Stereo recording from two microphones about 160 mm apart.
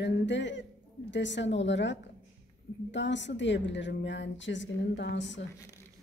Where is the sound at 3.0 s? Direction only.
90° left.